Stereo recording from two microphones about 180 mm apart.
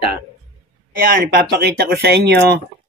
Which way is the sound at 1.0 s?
60° right (ahead or behind).